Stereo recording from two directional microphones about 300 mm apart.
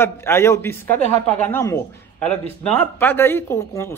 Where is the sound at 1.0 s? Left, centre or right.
Left.